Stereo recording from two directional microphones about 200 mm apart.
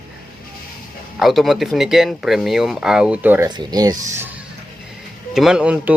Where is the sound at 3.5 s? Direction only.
20° right (ahead or behind).